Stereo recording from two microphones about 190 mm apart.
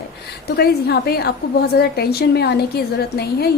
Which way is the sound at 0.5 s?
55° left (ahead or behind).